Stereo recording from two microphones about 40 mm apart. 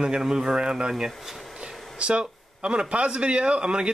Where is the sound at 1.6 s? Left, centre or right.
Right.